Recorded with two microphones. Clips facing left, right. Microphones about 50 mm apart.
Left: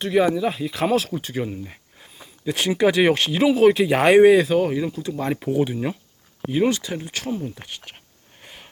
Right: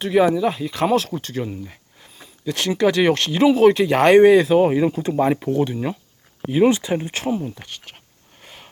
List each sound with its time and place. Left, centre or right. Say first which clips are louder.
0.0 s speech: right 2 dB; centre
4.5 s speech: right 5 dB; right
5.4 s speech: right 1 dB; centre
6.7 s speech: right 5 dB; right
7.3 s speech: right 4 dB; centre
7.5 s speech: even; centre
8.4 s a sound: right 1 dB; centre